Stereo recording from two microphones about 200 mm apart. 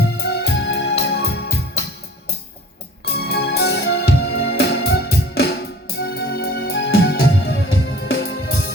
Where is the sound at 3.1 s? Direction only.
55° left (ahead or behind).